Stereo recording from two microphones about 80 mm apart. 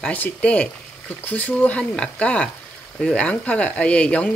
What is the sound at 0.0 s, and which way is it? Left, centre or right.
Speech, centre.